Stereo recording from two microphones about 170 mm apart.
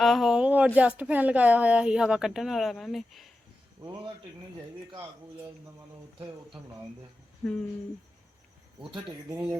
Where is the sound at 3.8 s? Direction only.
20° right (ahead or behind).